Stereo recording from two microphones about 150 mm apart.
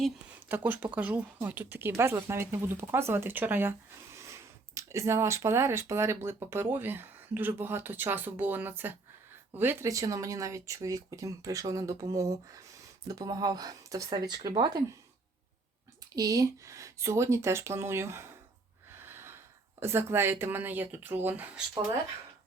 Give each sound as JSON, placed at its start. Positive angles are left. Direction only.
{"t": 0.4, "sound": "speech", "side_deg": -10}
{"t": 16.1, "sound": "speech", "side_deg": -25}
{"t": 18.9, "sound": "gasp", "side_deg": -15}
{"t": 19.8, "sound": "speech", "side_deg": -15}